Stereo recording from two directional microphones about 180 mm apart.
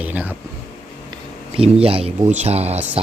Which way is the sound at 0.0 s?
10° right (ahead or behind).